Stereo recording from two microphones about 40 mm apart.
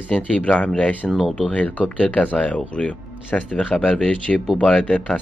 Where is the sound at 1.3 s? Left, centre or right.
Left.